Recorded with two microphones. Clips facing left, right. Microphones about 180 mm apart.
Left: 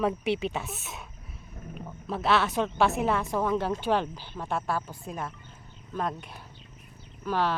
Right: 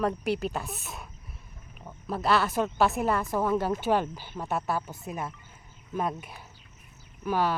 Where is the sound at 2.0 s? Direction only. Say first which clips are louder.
Even; centre (ahead or behind).